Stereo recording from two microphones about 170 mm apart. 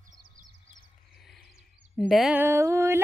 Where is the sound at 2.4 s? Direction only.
15° right (ahead or behind).